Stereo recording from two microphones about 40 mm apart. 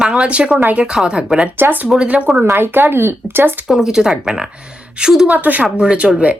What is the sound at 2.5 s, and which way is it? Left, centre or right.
Speech, right.